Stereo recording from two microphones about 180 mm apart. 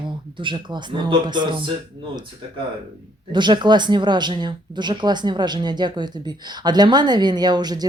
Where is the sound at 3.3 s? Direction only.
25° right (ahead or behind).